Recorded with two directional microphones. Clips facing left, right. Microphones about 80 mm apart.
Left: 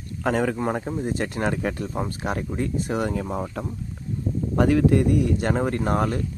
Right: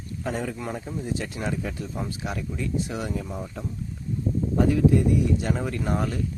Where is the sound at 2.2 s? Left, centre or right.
Left.